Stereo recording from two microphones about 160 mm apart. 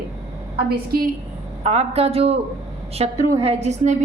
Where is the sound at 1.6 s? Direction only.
45° right (ahead or behind).